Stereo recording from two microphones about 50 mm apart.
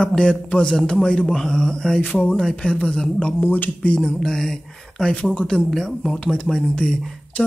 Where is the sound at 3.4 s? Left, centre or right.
Left.